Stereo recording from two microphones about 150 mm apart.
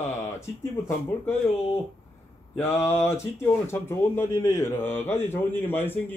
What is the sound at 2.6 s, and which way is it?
Speech, 15° left (ahead or behind).